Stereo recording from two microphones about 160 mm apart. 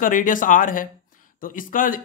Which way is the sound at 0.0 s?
55° left (ahead or behind).